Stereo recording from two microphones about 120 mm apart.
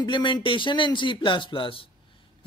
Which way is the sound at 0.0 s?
40° left (ahead or behind).